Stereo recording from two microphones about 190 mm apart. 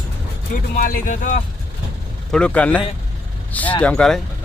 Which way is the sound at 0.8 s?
45° left (ahead or behind).